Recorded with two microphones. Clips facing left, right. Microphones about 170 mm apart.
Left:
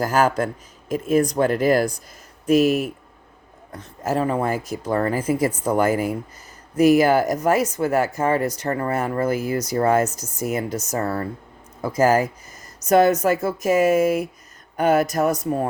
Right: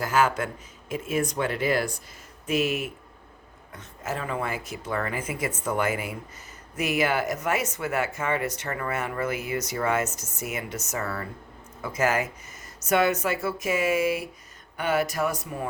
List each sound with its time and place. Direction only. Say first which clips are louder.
0.0 s speech: left 5 dB; 40° left (ahead or behind)